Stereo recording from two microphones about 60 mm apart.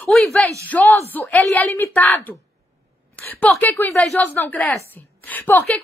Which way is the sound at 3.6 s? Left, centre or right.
Left.